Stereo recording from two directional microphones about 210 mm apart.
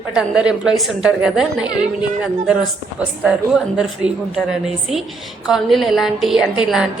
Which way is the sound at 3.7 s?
5° right (ahead or behind).